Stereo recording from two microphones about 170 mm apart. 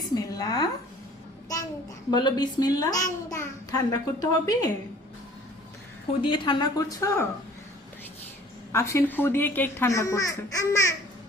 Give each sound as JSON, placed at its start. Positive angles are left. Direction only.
{"t": 0.1, "sound": "a sound", "side_deg": 20}
{"t": 2.0, "sound": "a child's voice", "side_deg": 25}
{"t": 6.2, "sound": "a child's voice", "side_deg": 30}
{"t": 8.7, "sound": "speech", "side_deg": 15}